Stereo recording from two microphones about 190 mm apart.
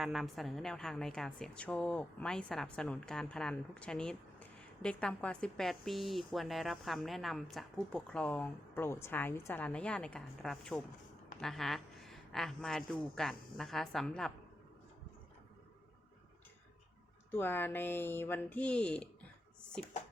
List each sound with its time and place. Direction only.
0.0 s a woman's voice: centre (ahead or behind)
17.3 s speech: 10° left (ahead or behind)